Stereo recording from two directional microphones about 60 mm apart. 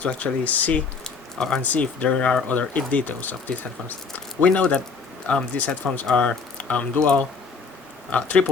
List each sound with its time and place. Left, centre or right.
0.0 s speech: left
1.0 s a sound: centre
1.6 s speech: left
4.4 s speech: left